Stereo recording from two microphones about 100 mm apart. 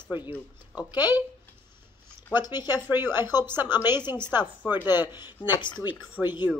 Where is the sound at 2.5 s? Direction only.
45° left (ahead or behind).